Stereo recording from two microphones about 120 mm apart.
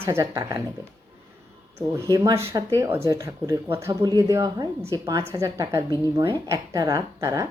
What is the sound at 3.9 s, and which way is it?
A woman's voice, 30° right (ahead or behind).